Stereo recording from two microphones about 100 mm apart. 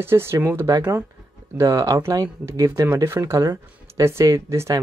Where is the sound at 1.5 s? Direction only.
35° right (ahead or behind).